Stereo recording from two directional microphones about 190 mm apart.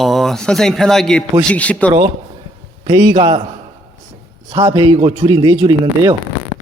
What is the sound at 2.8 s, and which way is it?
Speech, 25° right (ahead or behind).